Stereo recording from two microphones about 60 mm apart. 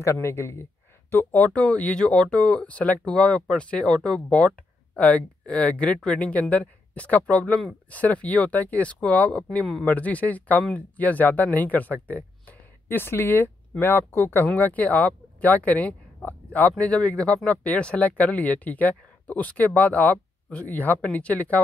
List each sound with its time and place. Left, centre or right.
0.0 s speech: left
1.3 s speech: left
12.8 s speech: left
14.4 s speech: left